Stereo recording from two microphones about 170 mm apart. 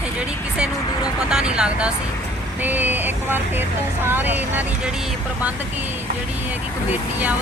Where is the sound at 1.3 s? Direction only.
5° right (ahead or behind).